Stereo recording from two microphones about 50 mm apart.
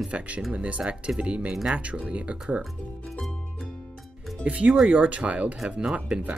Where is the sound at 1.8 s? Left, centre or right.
Right.